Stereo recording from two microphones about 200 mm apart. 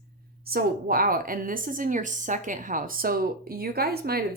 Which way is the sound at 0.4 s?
45° right (ahead or behind).